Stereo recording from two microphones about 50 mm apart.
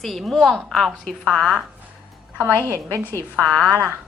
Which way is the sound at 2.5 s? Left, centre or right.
Right.